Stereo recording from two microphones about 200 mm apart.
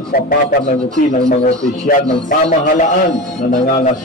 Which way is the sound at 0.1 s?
45° left (ahead or behind).